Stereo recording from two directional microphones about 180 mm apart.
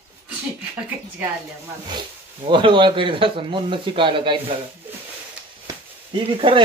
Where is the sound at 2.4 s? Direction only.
25° right (ahead or behind).